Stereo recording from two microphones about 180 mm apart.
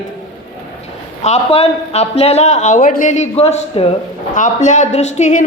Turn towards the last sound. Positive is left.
turn(degrees=40)  # may be behind; listen again after turning